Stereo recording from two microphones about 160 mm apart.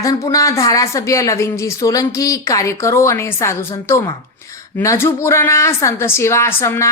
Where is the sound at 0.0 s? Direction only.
20° left (ahead or behind).